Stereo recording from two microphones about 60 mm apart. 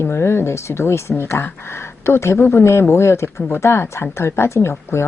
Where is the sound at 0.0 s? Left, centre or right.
Left.